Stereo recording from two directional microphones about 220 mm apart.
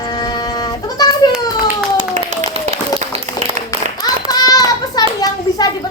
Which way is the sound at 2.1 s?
35° right (ahead or behind).